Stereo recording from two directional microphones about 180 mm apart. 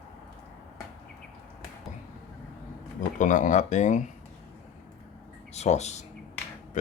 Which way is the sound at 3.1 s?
45° left (ahead or behind).